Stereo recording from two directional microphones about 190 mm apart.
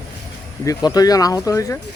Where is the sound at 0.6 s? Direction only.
20° left (ahead or behind).